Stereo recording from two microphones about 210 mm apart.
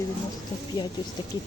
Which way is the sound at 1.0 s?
25° left (ahead or behind).